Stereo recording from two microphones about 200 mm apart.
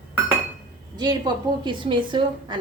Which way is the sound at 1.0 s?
20° right (ahead or behind).